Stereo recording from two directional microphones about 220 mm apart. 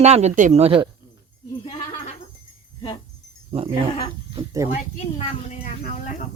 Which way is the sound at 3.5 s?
25° right (ahead or behind).